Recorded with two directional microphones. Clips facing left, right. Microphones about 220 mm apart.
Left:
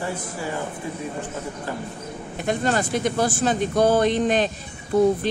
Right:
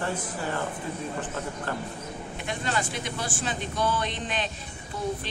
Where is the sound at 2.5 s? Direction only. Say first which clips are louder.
Left 9 dB; 45° left (ahead or behind).